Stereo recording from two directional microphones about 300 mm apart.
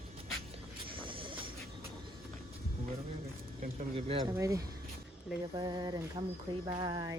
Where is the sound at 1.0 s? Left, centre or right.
Centre.